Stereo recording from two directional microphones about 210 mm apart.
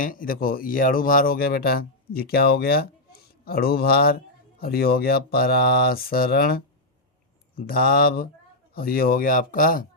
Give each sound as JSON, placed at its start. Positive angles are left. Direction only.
{"t": 0.0, "sound": "speech", "side_deg": 40}